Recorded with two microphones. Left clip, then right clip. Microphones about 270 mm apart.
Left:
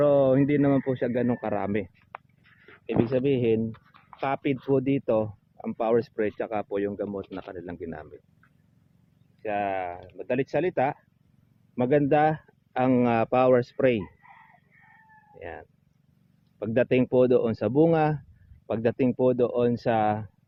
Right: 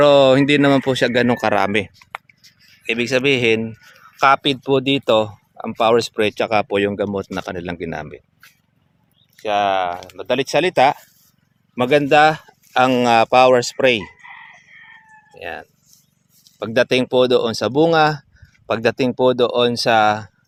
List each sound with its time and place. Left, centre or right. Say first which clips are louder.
0.0 s speech: right 9 dB; right
2.8 s speech: right 8 dB; centre; by 8.0 s right
9.3 s speech: right 11 dB; right
11.7 s speech: right 8 dB; centre
15.4 s speech: right 10 dB; centre